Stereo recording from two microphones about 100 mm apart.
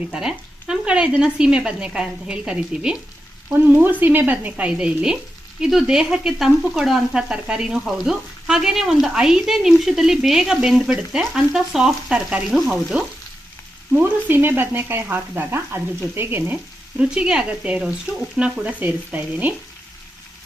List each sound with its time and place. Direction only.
0.1 s speech: 5° right (ahead or behind)
3.5 s frying: 20° right (ahead or behind)
4.0 s speech: 20° right (ahead or behind)
5.5 s frying: 5° right (ahead or behind)
13.9 s frying: 20° right (ahead or behind)
17.0 s speech: 10° right (ahead or behind)